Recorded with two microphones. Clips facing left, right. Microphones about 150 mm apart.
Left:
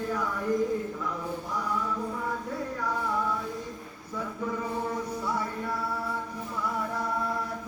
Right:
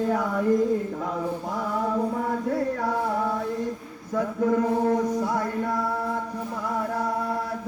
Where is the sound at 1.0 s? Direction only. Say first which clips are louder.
Right 5 dB; 55° right (ahead or behind).